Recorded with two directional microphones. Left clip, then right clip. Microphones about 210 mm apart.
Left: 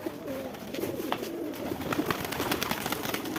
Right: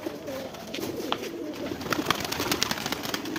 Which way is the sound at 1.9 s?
40° right (ahead or behind).